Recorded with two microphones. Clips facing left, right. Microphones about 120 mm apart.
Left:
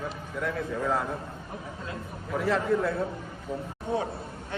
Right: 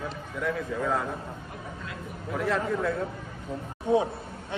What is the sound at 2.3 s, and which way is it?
Speech, centre (ahead or behind).